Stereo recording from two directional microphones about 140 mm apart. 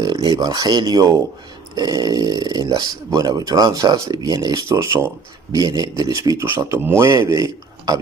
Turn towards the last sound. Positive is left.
turn(degrees=-25)  # may be behind; listen again after turning